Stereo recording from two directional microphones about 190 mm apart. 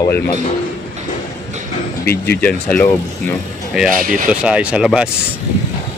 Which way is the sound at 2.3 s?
5° left (ahead or behind).